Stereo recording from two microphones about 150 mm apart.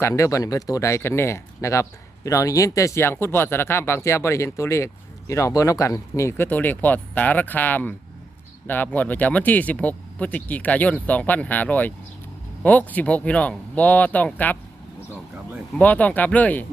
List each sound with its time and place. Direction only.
0.0 s speech: 20° left (ahead or behind)
15.8 s speech: 10° left (ahead or behind)